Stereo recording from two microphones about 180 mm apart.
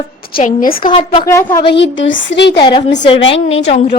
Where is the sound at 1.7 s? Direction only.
90° left; by 2.6 s 70° left (ahead or behind).